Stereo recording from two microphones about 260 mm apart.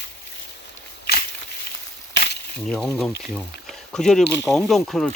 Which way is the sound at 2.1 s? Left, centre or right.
Left.